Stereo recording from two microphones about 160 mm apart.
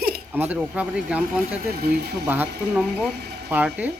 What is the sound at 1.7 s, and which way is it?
Speech, 75° right (ahead or behind).